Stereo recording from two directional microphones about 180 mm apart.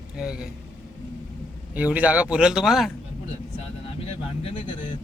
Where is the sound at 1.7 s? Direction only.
10° right (ahead or behind).